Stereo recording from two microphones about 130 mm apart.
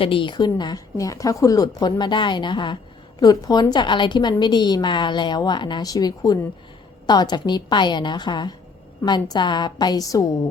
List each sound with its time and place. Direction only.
0.0 s a woman's voice: 40° left (ahead or behind)